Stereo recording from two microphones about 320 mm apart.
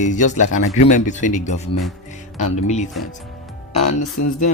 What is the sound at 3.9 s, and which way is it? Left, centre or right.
Speech, left.